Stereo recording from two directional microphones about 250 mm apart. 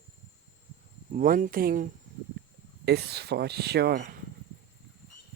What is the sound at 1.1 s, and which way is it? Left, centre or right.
Speech, right.